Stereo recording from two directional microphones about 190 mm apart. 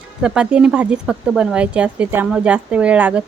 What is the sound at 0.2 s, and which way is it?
Speech, 5° right (ahead or behind).